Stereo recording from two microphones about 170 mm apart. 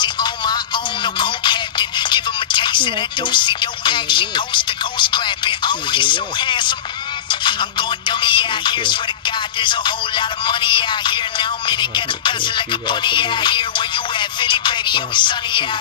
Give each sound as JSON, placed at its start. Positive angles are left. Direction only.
{"t": 0.0, "sound": "music", "side_deg": 25}
{"t": 1.0, "sound": "speech", "side_deg": 25}
{"t": 8.1, "sound": "music", "side_deg": 30}